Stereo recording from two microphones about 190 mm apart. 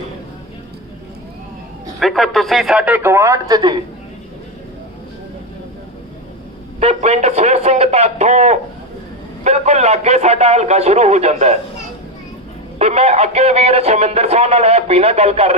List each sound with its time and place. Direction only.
2.0 s a man's voice: centre (ahead or behind); by 3.8 s 20° right (ahead or behind)
6.7 s speech: 35° right (ahead or behind)
12.8 s speech: 35° right (ahead or behind)